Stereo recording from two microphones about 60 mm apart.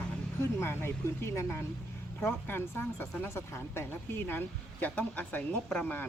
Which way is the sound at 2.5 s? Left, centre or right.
Left.